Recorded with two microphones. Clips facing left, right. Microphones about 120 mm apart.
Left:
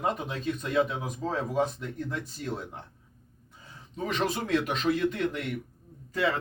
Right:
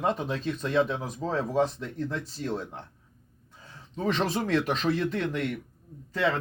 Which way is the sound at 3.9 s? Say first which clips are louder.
Right 2 dB; 35° right (ahead or behind).